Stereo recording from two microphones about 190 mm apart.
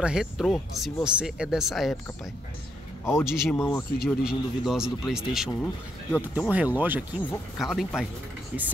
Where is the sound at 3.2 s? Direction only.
Centre (ahead or behind).